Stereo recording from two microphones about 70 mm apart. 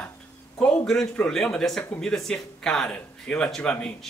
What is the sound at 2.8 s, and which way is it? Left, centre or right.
Speech, centre.